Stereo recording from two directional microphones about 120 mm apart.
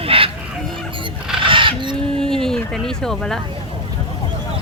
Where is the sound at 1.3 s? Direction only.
45° right (ahead or behind).